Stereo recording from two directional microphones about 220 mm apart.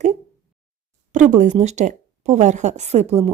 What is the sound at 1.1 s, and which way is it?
Speech, 35° right (ahead or behind).